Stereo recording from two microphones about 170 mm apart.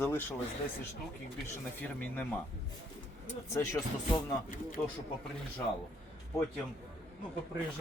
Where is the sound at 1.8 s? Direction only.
10° left (ahead or behind).